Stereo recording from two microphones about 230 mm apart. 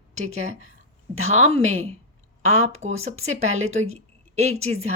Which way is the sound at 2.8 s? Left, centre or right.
Right.